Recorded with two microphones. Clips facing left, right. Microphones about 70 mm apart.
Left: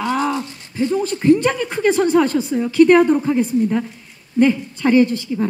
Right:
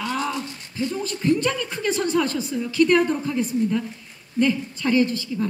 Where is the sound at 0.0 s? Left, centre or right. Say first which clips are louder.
Left 6 dB; left.